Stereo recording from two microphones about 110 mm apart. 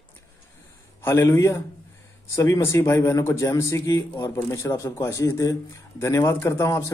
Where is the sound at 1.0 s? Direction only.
25° left (ahead or behind).